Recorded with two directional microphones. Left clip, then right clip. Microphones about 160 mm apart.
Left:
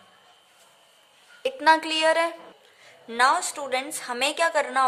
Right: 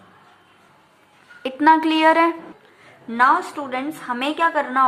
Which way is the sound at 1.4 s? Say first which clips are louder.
Right 5 dB; 25° left (ahead or behind).